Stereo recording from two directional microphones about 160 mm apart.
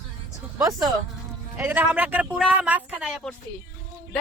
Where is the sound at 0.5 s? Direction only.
20° right (ahead or behind).